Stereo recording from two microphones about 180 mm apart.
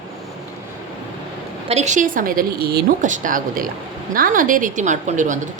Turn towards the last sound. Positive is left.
turn(degrees=-45)  # may be behind; listen again after turning